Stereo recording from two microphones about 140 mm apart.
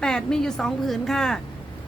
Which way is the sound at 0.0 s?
5° left (ahead or behind).